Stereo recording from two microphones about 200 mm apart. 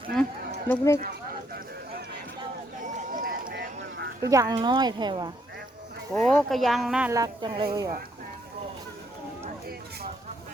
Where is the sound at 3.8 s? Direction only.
60° right (ahead or behind).